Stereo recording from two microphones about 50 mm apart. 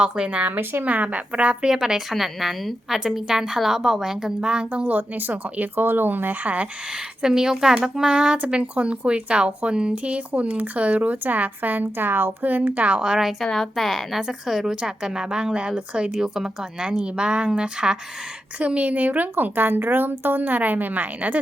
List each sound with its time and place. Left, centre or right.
0.0 s a woman's voice: right
0.5 s a woman's voice: right
0.9 s a woman's voice: right
1.7 s a woman's voice: centre
4.4 s speech: centre; by 6.5 s right
6.9 s a woman's voice: centre; by 13.0 s right
13.0 s a woman's voice: centre
13.2 s a woman's voice: centre
18.6 s speech: right